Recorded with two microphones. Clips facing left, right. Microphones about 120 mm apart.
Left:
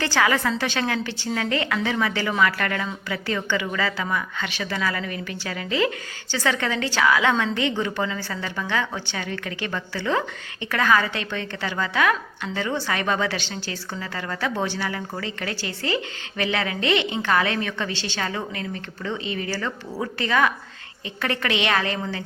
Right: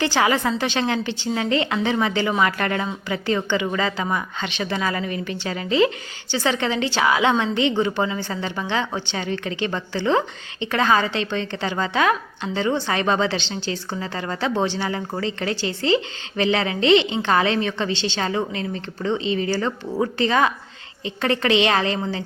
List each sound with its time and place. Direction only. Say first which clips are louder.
0.0 s a woman's voice: right 2 dB; 20° right (ahead or behind)